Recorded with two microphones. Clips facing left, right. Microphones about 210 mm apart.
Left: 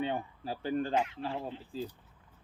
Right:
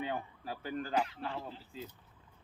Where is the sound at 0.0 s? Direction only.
30° left (ahead or behind).